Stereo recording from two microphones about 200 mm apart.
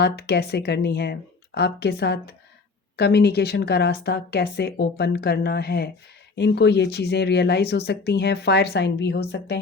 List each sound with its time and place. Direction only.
0.0 s speech: 55° left (ahead or behind)